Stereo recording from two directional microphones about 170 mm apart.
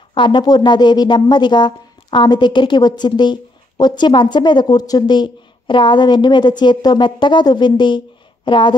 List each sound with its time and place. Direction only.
0.1 s speech: 25° left (ahead or behind)